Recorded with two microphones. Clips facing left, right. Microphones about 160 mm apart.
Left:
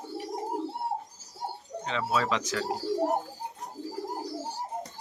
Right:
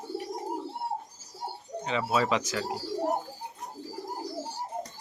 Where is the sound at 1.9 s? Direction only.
10° right (ahead or behind).